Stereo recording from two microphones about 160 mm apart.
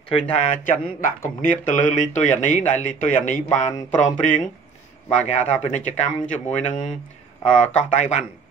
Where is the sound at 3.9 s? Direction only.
50° left (ahead or behind).